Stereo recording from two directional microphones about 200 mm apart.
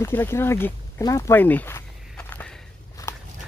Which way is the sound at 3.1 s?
15° left (ahead or behind).